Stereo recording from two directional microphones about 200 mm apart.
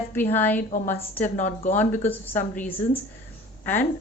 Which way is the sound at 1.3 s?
35° left (ahead or behind).